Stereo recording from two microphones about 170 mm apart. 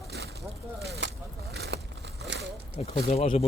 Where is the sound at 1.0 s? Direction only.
90° right.